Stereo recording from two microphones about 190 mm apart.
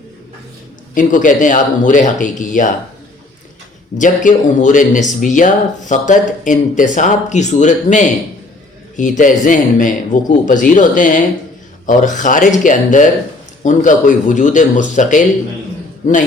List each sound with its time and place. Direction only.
0.9 s a man's voice: 45° left (ahead or behind)
3.9 s a man's voice: 40° left (ahead or behind)